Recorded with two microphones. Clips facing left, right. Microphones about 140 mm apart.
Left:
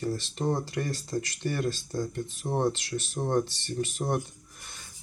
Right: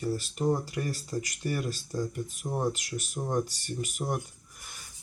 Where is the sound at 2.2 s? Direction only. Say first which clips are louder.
Left 3 dB; 30° left (ahead or behind).